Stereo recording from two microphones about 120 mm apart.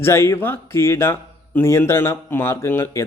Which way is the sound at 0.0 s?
20° left (ahead or behind).